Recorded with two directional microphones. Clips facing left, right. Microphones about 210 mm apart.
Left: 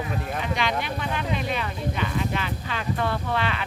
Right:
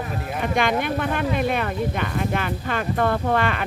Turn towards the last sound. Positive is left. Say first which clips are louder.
# right 5 dB
turn(degrees=-50)  # may be behind; listen again after turning